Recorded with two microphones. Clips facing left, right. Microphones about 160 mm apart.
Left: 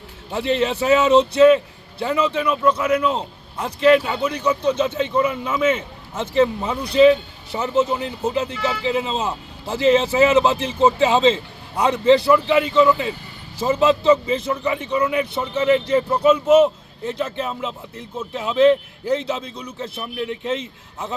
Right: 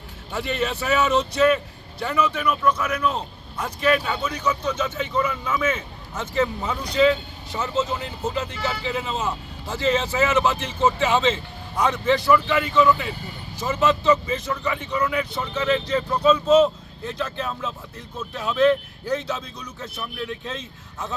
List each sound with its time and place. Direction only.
0.3 s speech: 25° left (ahead or behind)